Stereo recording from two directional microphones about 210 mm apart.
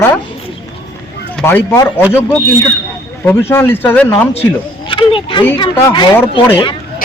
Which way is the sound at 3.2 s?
10° left (ahead or behind).